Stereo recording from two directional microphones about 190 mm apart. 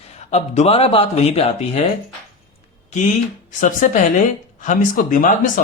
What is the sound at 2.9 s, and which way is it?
Speech, 40° left (ahead or behind).